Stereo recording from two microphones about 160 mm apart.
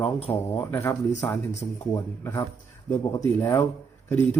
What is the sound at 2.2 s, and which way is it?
Speech, 15° left (ahead or behind).